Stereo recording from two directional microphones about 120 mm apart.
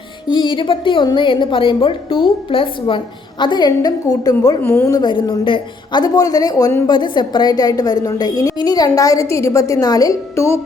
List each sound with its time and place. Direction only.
0.3 s a woman's voice: 40° left (ahead or behind)
4.6 s a woman's voice: 15° left (ahead or behind)
4.9 s a woman's voice: 35° left (ahead or behind)